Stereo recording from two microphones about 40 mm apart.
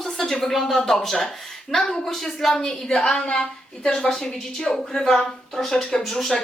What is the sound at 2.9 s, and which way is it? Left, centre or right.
A woman's voice, left.